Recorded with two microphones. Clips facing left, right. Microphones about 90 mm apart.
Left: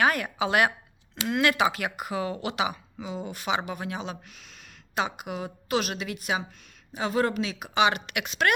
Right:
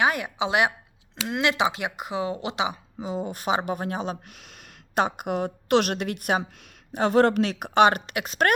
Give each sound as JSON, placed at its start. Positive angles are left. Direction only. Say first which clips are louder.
{"t": 0.0, "sound": "a woman's voice", "louder": "right 1 dB", "side_deg": -20}
{"t": 3.0, "sound": "a woman's voice", "louder": "right 5 dB", "side_deg": -40}
{"t": 8.0, "sound": "speech", "louder": "right 2 dB", "side_deg": -35}